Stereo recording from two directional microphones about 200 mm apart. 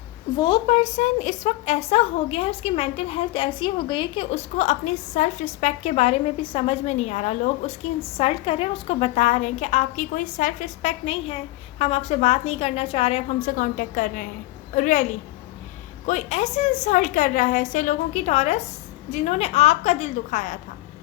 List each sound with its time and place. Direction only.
0.3 s a woman's voice: 25° left (ahead or behind); by 15.0 s 40° left (ahead or behind)
16.0 s a woman's voice: 35° left (ahead or behind)